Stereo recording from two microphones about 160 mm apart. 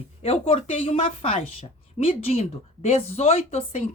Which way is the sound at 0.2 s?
40° left (ahead or behind).